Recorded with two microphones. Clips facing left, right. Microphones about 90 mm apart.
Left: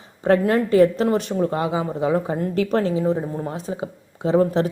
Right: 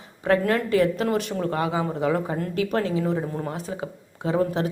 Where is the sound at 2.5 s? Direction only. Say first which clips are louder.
Left 3 dB; 35° left (ahead or behind).